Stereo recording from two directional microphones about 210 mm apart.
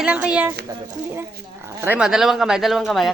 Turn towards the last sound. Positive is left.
turn(degrees=0)  # may be behind; listen again after turning